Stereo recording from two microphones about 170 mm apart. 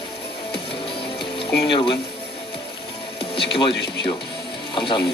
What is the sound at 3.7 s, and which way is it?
Speech, 85° left.